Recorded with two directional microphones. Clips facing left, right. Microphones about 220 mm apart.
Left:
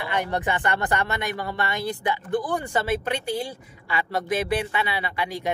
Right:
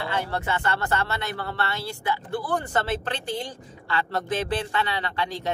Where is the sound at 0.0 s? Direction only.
15° left (ahead or behind).